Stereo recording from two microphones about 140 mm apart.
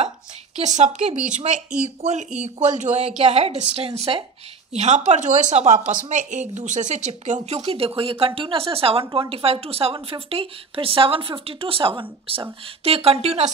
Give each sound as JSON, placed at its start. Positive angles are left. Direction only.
{"t": 0.6, "sound": "speech", "side_deg": -55}